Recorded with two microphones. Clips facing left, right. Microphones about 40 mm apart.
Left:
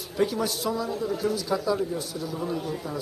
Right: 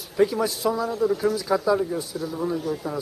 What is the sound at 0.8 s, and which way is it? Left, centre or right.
Speech, right.